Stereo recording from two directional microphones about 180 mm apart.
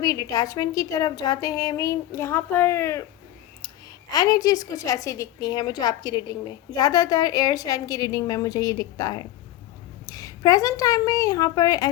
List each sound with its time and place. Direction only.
0.0 s a woman's voice: 20° left (ahead or behind)
4.1 s a woman's voice: 20° left (ahead or behind)